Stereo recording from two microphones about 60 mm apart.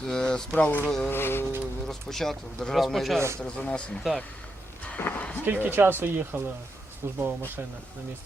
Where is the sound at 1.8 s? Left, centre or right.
Centre.